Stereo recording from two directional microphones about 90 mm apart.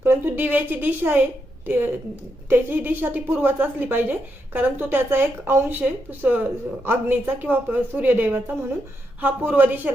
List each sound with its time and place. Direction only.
0.0 s a woman's voice: 25° right (ahead or behind)